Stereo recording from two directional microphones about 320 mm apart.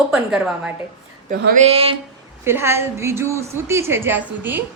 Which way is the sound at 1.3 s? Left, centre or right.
Right.